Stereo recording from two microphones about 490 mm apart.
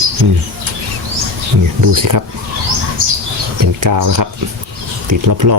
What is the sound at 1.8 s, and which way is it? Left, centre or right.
Speech, right.